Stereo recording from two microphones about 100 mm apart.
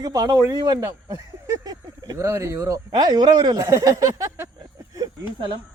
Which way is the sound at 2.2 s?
30° right (ahead or behind).